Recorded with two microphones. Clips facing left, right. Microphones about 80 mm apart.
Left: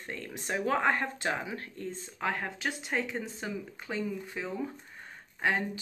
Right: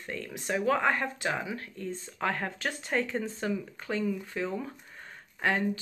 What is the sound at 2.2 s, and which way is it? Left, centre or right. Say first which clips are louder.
Speech: right 1 dB; centre.